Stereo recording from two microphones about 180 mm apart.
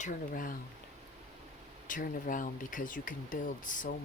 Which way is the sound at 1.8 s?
45° left (ahead or behind).